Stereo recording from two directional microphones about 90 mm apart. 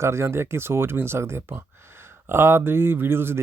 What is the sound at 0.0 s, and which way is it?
Speech, 30° right (ahead or behind).